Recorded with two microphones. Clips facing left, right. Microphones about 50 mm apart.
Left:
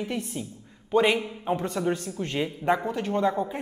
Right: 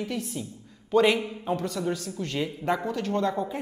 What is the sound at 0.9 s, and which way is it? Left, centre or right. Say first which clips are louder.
A man's voice: right 1 dB; centre.